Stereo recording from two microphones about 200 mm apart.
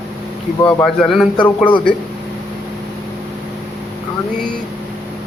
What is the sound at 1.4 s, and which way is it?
Speech, 25° left (ahead or behind).